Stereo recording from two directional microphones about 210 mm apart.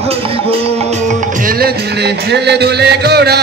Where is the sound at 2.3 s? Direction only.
50° right (ahead or behind).